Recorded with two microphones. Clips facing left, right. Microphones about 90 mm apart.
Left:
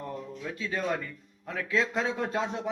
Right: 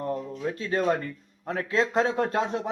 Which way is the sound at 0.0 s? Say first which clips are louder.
Right 7 dB; 45° right (ahead or behind).